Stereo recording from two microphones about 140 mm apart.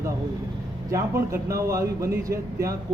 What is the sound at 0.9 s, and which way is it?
Speech, 20° right (ahead or behind).